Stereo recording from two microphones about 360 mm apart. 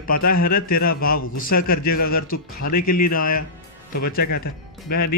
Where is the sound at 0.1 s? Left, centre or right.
Left.